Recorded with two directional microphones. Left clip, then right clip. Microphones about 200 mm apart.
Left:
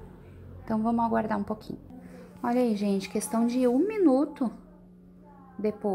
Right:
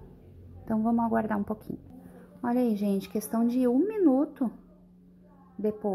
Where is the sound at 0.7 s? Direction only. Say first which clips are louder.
Left 1 dB; 20° right (ahead or behind).